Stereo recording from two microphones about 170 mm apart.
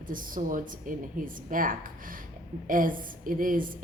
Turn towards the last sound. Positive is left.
turn(degrees=-55)  # may be behind; listen again after turning